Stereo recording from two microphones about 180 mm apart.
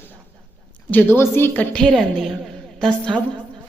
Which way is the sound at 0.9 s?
10° left (ahead or behind).